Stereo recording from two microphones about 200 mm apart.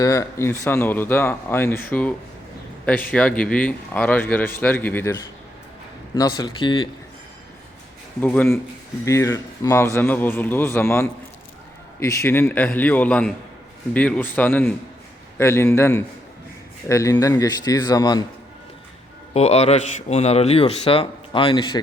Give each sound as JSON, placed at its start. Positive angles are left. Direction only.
{"t": 0.0, "sound": "speech", "side_deg": 15}
{"t": 6.1, "sound": "a man's voice", "side_deg": 20}
{"t": 8.2, "sound": "speech", "side_deg": 10}
{"t": 19.3, "sound": "a man's voice", "side_deg": 30}